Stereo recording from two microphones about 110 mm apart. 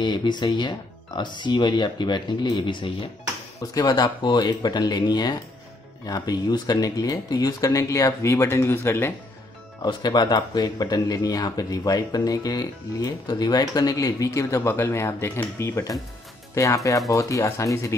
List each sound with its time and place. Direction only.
0.0 s speech: 45° left (ahead or behind)
3.7 s speech: 40° left (ahead or behind)
9.8 s speech: 40° left (ahead or behind)